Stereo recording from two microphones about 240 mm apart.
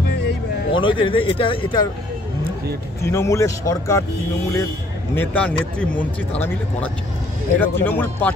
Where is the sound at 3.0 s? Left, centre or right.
Centre.